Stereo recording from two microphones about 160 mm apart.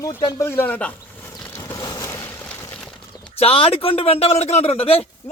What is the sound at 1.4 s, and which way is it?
Vehicle, 15° left (ahead or behind).